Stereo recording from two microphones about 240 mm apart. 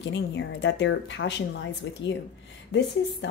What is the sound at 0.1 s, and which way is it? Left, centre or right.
Speech, left.